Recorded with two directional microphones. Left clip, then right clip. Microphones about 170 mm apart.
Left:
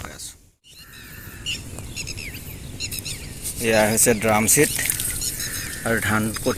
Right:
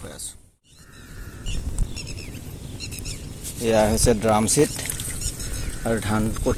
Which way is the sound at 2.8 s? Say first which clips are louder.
Left 6 dB; 70° right (ahead or behind).